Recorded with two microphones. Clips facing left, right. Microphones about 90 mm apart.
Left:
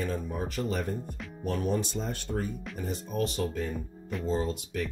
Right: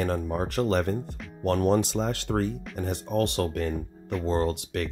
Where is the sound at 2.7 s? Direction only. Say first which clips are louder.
Right 5 dB; 65° right (ahead or behind).